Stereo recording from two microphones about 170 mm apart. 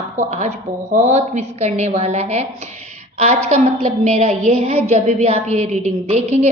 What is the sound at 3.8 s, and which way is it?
A woman's voice, 40° right (ahead or behind).